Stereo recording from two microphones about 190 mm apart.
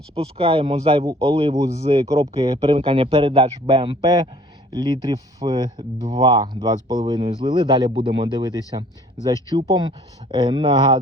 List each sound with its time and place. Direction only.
0.1 s speech: 30° right (ahead or behind)
1.5 s speech: 15° right (ahead or behind)